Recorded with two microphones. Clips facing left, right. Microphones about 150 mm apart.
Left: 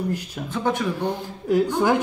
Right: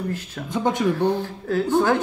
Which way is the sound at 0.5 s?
15° right (ahead or behind).